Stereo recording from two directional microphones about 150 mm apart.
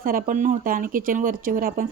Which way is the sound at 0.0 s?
65° right (ahead or behind).